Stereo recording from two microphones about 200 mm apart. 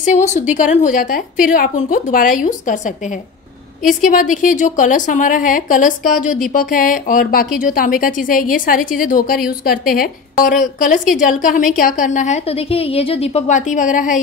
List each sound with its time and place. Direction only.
0.0 s a woman's voice: 35° left (ahead or behind)